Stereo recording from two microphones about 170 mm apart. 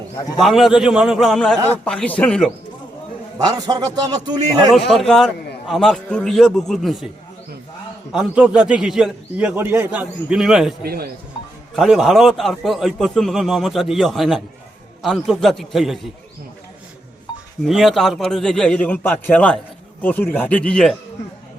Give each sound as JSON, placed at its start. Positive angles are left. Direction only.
{"t": 0.3, "sound": "a man's voice", "side_deg": 0}
{"t": 3.3, "sound": "a man's voice", "side_deg": -25}
{"t": 4.7, "sound": "a man's voice", "side_deg": 0}
{"t": 8.1, "sound": "a man's voice", "side_deg": -5}
{"t": 10.8, "sound": "speech", "side_deg": -65}
{"t": 11.7, "sound": "a man's voice", "side_deg": 0}
{"t": 17.6, "sound": "a man's voice", "side_deg": 0}